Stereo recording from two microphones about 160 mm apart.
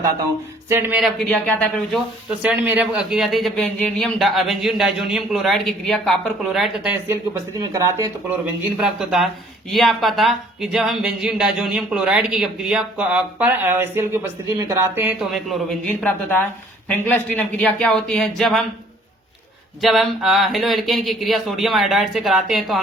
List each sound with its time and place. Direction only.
0.7 s speech: 15° right (ahead or behind)
0.9 s speech: centre (ahead or behind)
2.4 s speech: 10° right (ahead or behind)
7.6 s speech: 20° right (ahead or behind)
8.8 s speech: centre (ahead or behind)
15.2 s speech: centre (ahead or behind)
15.9 s speech: 10° left (ahead or behind)
19.8 s speech: centre (ahead or behind)